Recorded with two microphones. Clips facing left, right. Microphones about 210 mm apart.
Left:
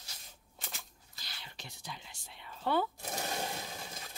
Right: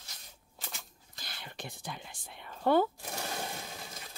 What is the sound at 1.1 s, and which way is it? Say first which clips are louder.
Whispering: right 6 dB; 50° right (ahead or behind).